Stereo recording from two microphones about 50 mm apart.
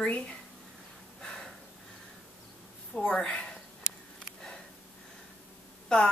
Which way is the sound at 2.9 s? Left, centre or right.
Centre.